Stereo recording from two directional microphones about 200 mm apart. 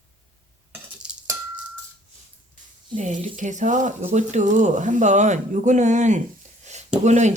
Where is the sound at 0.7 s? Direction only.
5° right (ahead or behind).